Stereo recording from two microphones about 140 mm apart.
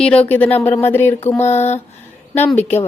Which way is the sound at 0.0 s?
10° left (ahead or behind).